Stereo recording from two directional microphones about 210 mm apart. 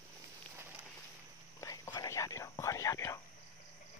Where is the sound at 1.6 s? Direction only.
15° left (ahead or behind).